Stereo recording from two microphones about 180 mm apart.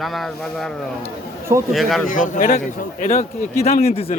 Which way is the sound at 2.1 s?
45° left (ahead or behind).